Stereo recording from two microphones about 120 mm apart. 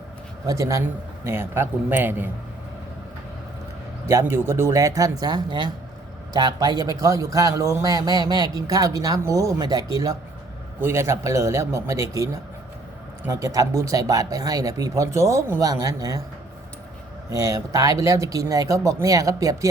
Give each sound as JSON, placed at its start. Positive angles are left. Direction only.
{"t": 0.4, "sound": "a man's voice", "side_deg": -30}
{"t": 4.1, "sound": "a man's voice", "side_deg": -25}
{"t": 17.3, "sound": "speech", "side_deg": -30}